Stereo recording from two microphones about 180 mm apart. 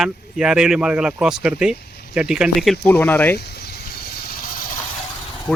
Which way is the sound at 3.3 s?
60° left (ahead or behind).